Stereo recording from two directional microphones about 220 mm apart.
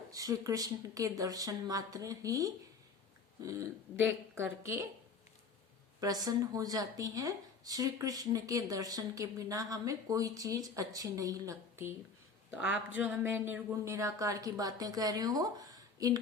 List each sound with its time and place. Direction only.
0.1 s speech: 15° right (ahead or behind)
6.0 s speech: 15° right (ahead or behind)